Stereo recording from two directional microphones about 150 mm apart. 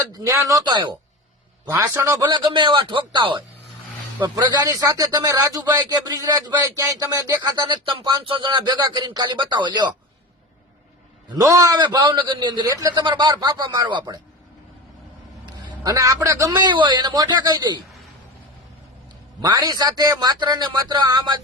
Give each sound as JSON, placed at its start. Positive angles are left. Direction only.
{"t": 0.1, "sound": "a man's voice", "side_deg": -20}
{"t": 1.7, "sound": "a man's voice", "side_deg": -20}
{"t": 11.3, "sound": "a man's voice", "side_deg": -20}
{"t": 15.6, "sound": "a man's voice", "side_deg": -25}
{"t": 19.4, "sound": "a man's voice", "side_deg": -25}